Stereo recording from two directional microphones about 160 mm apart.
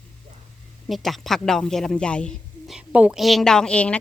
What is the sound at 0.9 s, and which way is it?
Speech, centre (ahead or behind).